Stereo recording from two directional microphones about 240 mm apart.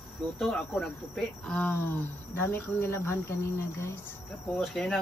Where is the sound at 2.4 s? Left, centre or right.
Centre.